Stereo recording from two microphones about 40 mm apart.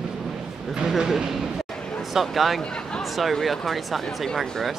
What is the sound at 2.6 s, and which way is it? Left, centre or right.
Speech, centre.